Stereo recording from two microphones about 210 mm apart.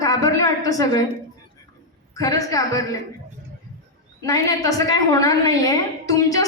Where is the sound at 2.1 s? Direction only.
15° left (ahead or behind).